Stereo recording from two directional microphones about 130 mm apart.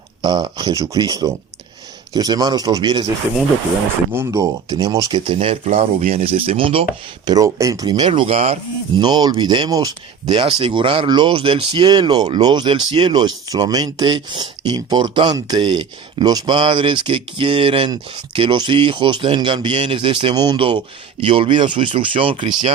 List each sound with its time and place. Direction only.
0.2 s speech: 35° right (ahead or behind)
4.1 s speech: 20° right (ahead or behind)
5.1 s speech: 45° right (ahead or behind)
7.3 s speech: 25° right (ahead or behind); by 8.5 s 50° right (ahead or behind)
9.0 s speech: 35° right (ahead or behind)